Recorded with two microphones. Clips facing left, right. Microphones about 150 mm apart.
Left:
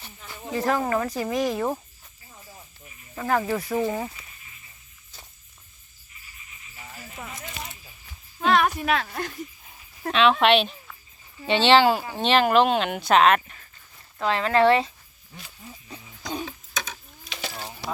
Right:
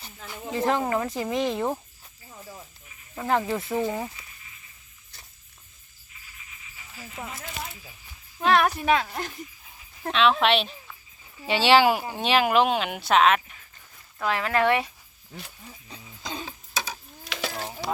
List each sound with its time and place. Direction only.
0.5 s speech: 20° right (ahead or behind)
3.2 s speech: 20° right (ahead or behind)
3.8 s speech: 5° left (ahead or behind)
8.4 s speech: 5° right (ahead or behind)
14.2 s speech: 20° left (ahead or behind)
16.5 s a sound: 35° right (ahead or behind)
17.3 s a sound: 90° right